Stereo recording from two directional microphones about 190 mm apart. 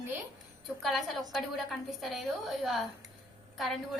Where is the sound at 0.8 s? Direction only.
Centre (ahead or behind).